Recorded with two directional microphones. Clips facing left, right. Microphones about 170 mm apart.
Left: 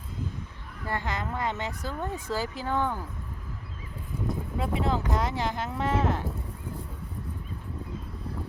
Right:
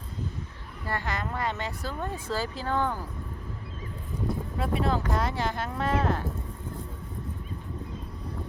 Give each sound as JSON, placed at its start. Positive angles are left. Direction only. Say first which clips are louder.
{"t": 0.9, "sound": "speech", "louder": "even", "side_deg": 20}
{"t": 4.5, "sound": "speech", "louder": "even", "side_deg": 20}